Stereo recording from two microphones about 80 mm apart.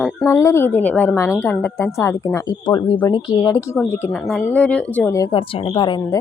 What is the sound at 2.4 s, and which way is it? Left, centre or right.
Speech, left.